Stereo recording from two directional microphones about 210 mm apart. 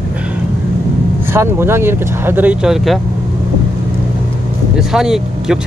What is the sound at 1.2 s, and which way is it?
Speech, 10° right (ahead or behind).